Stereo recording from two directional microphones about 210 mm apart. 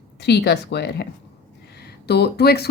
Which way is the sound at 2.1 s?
50° left (ahead or behind).